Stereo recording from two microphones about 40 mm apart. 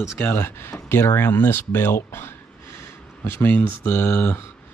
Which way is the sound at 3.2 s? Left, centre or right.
Left.